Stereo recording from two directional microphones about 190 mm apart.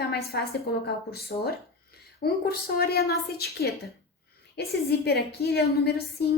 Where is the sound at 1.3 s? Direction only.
35° left (ahead or behind).